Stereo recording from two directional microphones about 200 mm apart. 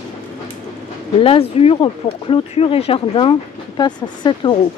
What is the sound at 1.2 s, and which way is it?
Speech, 30° left (ahead or behind).